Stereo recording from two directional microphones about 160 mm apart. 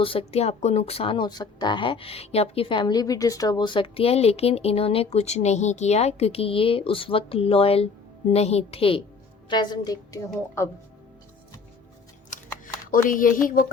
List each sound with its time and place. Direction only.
0.0 s a woman's voice: 35° left (ahead or behind); by 10.7 s 20° left (ahead or behind)
12.3 s a sound: 50° left (ahead or behind)
12.6 s speech: 55° left (ahead or behind)